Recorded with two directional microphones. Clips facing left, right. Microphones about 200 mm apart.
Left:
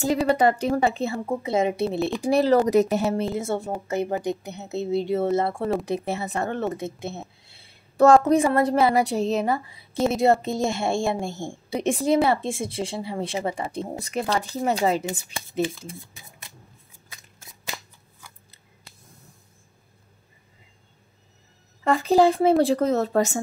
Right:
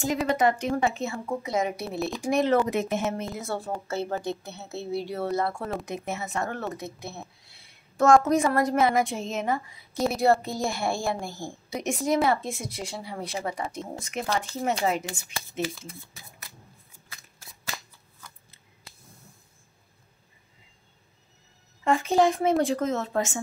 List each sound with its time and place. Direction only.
0.4 s a woman's voice: 35° left (ahead or behind)
10.0 s a woman's voice: 20° left (ahead or behind)
21.8 s speech: 35° left (ahead or behind)